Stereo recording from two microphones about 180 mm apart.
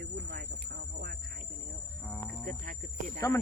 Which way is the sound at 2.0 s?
Centre (ahead or behind).